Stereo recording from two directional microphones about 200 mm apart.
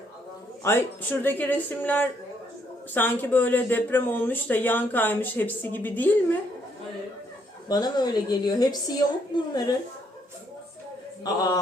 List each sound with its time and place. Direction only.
0.6 s speech: 10° left (ahead or behind)
7.7 s speech: 20° left (ahead or behind)
11.2 s speech: 20° left (ahead or behind)